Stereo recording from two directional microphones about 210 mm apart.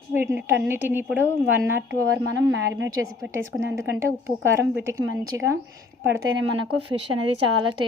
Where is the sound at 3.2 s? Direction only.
15° right (ahead or behind).